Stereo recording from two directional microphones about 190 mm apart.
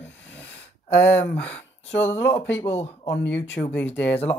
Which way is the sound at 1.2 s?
5° left (ahead or behind).